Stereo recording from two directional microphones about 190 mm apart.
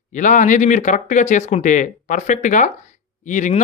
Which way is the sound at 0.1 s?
40° left (ahead or behind).